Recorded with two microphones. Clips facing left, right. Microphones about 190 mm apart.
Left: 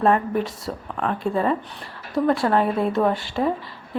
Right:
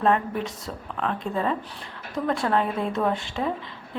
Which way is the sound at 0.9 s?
10° left (ahead or behind).